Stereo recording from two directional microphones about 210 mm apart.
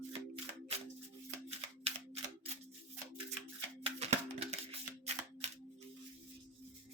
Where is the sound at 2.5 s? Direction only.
30° right (ahead or behind).